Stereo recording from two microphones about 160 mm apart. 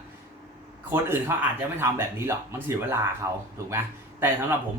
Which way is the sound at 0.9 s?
15° right (ahead or behind).